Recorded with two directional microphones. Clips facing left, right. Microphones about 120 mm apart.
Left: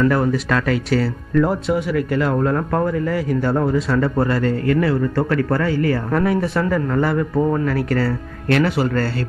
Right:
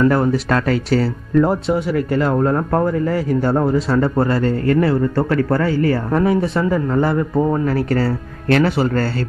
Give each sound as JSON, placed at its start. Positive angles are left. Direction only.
{"t": 0.0, "sound": "speech", "side_deg": -30}